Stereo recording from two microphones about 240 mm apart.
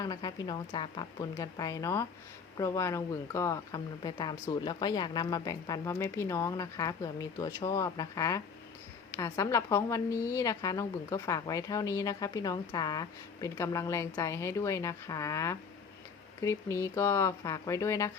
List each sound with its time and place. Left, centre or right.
0.0 s a woman's voice: centre